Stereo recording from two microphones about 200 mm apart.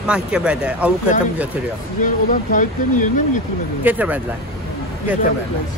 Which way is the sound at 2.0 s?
40° left (ahead or behind).